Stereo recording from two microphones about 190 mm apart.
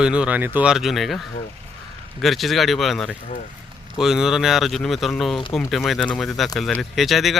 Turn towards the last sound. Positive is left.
turn(degrees=0)  # may be behind; listen again after turning